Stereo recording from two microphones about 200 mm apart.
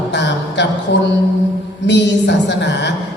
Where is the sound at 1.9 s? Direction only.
60° left (ahead or behind).